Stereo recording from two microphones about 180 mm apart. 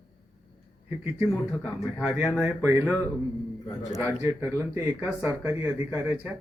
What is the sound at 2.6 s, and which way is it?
Speech, 10° right (ahead or behind).